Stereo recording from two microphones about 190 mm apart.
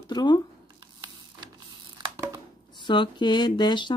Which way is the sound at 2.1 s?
20° right (ahead or behind).